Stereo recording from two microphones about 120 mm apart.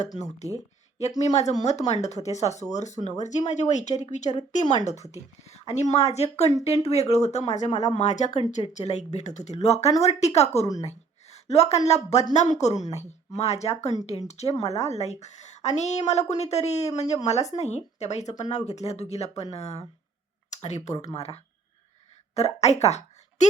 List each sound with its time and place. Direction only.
0.2 s a woman's voice: 70° left (ahead or behind)
4.5 s speech: 90° left
5.5 s a woman's voice: 65° left (ahead or behind)
7.7 s speech: 35° left (ahead or behind)
7.9 s a woman's voice: 75° left (ahead or behind)
20.5 s speech: 75° left (ahead or behind)
21.1 s a woman's voice: 60° left (ahead or behind)